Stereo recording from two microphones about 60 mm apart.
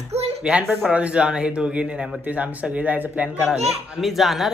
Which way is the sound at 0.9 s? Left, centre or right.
Centre.